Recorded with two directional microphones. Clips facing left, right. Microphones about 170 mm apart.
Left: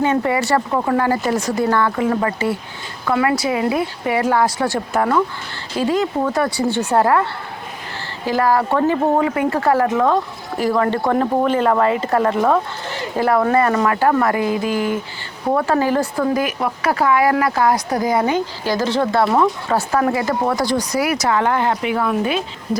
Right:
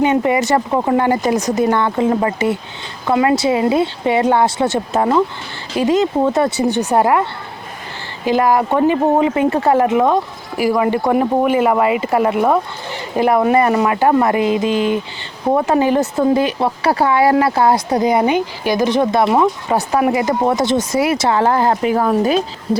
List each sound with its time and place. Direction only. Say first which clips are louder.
0.0 s speech: right 3 dB; 20° right (ahead or behind); by 22.8 s 35° right (ahead or behind)